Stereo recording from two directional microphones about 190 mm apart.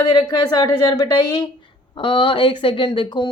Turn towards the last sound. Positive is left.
turn(degrees=25)  # may be behind; listen again after turning